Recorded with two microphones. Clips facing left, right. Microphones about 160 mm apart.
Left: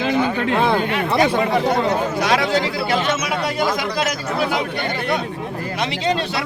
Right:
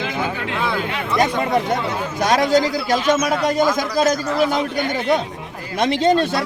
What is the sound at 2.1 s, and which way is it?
A man's voice, 45° right (ahead or behind).